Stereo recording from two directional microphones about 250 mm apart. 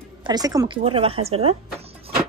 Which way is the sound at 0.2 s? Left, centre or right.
Centre.